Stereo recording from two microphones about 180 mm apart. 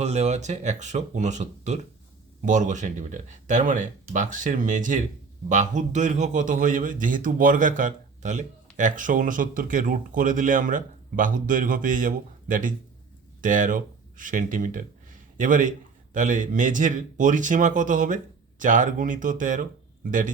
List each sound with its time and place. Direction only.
0.0 s speech: 35° right (ahead or behind)